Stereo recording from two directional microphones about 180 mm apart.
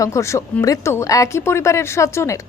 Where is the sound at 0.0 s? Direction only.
15° left (ahead or behind).